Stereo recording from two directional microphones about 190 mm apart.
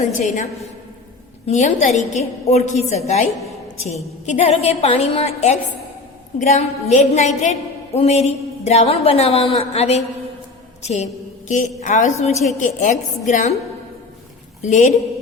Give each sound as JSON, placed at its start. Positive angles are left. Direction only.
{"t": 0.0, "sound": "a woman's voice", "side_deg": 40}
{"t": 1.5, "sound": "a woman's voice", "side_deg": 40}
{"t": 4.3, "sound": "a woman's voice", "side_deg": 35}
{"t": 10.8, "sound": "a sound", "side_deg": 35}
{"t": 11.8, "sound": "a woman's voice", "side_deg": 40}
{"t": 14.6, "sound": "a woman's voice", "side_deg": 40}